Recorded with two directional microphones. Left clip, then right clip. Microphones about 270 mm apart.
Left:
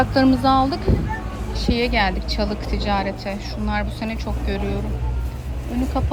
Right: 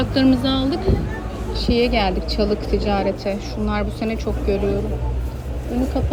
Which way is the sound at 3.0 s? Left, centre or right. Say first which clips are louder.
Right 4 dB; left.